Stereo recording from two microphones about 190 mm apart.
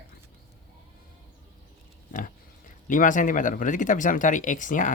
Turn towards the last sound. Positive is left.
turn(degrees=45)  # may be behind; listen again after turning